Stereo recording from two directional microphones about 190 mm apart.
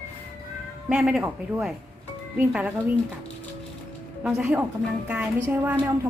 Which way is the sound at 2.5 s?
5° right (ahead or behind).